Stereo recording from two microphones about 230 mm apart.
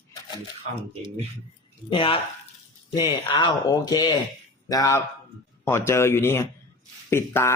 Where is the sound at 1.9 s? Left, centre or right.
Left.